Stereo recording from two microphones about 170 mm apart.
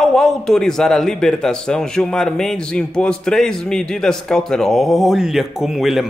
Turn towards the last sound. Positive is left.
turn(degrees=0)  # may be behind; listen again after turning